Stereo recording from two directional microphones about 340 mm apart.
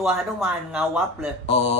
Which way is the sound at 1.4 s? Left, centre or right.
Centre.